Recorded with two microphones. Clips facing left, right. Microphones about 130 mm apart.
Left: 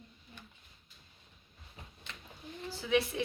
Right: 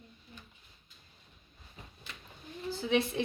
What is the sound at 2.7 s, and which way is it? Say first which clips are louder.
Speech: right 1 dB; 25° right (ahead or behind).